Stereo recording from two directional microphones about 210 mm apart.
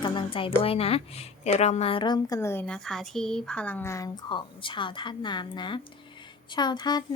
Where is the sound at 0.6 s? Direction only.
25° left (ahead or behind).